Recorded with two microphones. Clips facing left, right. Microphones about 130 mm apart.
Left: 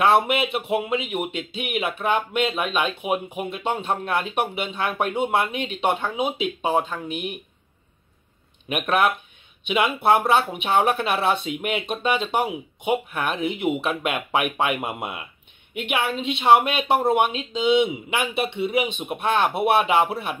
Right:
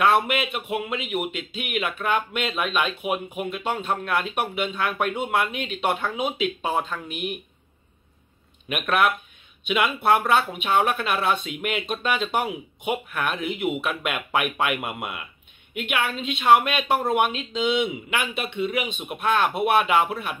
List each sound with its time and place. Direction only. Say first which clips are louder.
0.0 s speech: left 2 dB; 30° left (ahead or behind)
8.6 s speech: left 1 dB; 30° left (ahead or behind)
16.3 s speech: left 1 dB; 25° left (ahead or behind)